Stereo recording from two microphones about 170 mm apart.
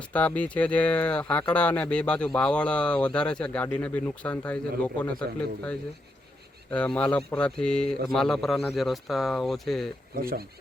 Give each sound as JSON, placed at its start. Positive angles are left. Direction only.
{"t": 0.1, "sound": "speech", "side_deg": 10}
{"t": 6.7, "sound": "a man's voice", "side_deg": 5}
{"t": 10.2, "sound": "speech", "side_deg": -60}